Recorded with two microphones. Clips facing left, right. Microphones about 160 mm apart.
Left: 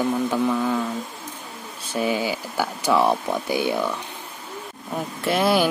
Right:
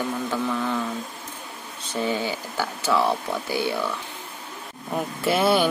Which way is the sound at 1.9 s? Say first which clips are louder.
Left 2 dB; 10° left (ahead or behind).